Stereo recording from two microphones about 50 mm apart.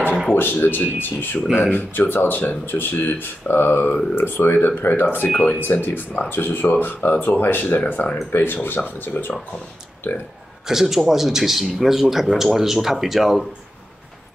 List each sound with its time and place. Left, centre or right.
0.3 s speech: left
10.7 s speech: centre